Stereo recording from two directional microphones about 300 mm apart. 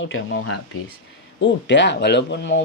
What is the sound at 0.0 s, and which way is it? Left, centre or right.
Speech, left.